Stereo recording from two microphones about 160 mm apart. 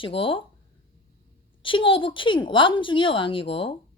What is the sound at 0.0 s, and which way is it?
Speech, 35° left (ahead or behind).